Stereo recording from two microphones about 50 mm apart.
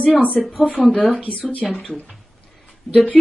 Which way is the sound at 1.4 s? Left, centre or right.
Left.